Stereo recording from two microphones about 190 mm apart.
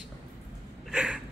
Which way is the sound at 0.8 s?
5° right (ahead or behind).